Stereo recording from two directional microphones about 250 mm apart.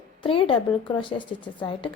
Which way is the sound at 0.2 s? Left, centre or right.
Left.